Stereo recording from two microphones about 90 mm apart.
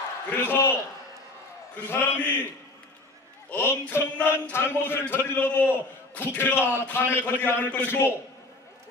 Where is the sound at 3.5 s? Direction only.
20° left (ahead or behind).